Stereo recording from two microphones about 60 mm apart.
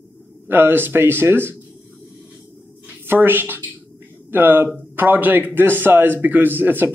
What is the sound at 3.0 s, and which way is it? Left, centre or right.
A man's voice, right.